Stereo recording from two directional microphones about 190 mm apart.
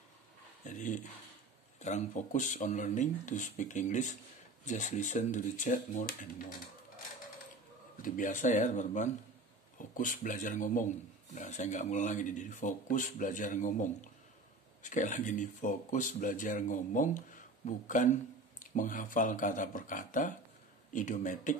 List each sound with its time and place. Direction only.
0.7 s speech: 40° left (ahead or behind)
8.0 s speech: 40° left (ahead or behind)